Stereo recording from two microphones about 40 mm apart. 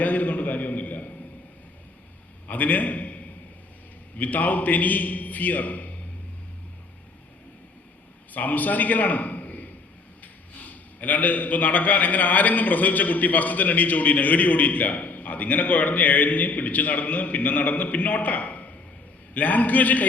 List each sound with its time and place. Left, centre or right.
0.0 s a sound: left
2.5 s a man's voice: left
4.2 s a man's voice: left
8.3 s a man's voice: left